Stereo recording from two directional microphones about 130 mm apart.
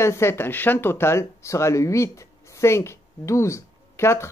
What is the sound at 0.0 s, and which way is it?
Speech, 20° left (ahead or behind).